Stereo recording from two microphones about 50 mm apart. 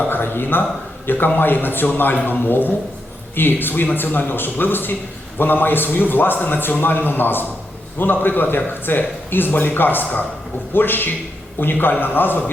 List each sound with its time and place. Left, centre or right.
0.1 s a man's voice: left